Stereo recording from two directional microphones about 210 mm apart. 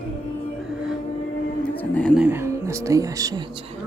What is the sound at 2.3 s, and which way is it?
Speech, 15° right (ahead or behind).